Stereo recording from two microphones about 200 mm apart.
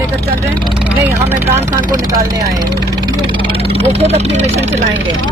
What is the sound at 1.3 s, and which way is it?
Speech, 15° right (ahead or behind).